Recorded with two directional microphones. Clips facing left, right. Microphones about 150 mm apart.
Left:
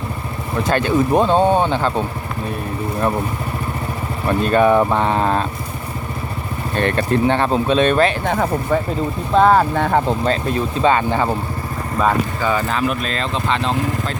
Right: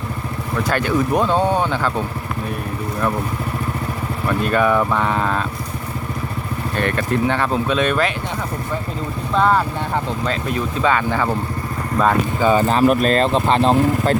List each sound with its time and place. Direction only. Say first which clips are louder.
0.5 s speech: left 2 dB; 25° left (ahead or behind)
4.3 s speech: left 3 dB; 30° left (ahead or behind)
6.7 s speech: left 3 dB; 30° left (ahead or behind)
8.3 s speech: left 7 dB; 55° left (ahead or behind)
9.3 s speech: left 4 dB; 35° left (ahead or behind)
9.7 s speech: left 6 dB; 60° left (ahead or behind)
10.1 s speech: left 4 dB; 35° left (ahead or behind)
12.4 s speech: right 4 dB; 25° right (ahead or behind)
12.8 s speech: right 7 dB; 45° right (ahead or behind)